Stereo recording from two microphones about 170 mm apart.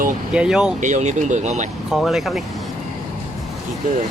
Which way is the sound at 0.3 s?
5° right (ahead or behind).